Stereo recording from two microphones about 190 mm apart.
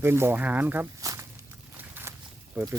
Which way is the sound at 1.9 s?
10° right (ahead or behind).